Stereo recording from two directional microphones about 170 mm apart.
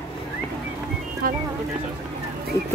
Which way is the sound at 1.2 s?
60° right (ahead or behind).